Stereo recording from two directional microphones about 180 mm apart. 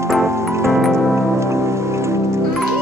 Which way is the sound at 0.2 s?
15° right (ahead or behind).